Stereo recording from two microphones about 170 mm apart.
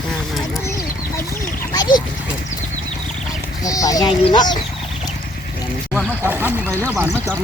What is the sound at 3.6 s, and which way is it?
Speech, 20° left (ahead or behind).